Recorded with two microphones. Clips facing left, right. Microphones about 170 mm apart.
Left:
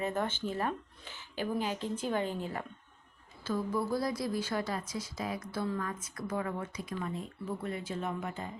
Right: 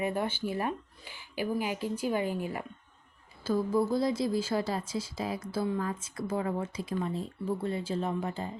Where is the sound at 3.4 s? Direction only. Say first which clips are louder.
Right 5 dB; 30° right (ahead or behind).